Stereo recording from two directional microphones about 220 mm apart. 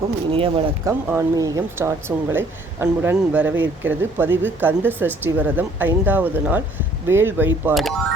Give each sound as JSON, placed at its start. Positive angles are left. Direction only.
{"t": 0.3, "sound": "speech", "side_deg": -25}
{"t": 0.9, "sound": "speech", "side_deg": -10}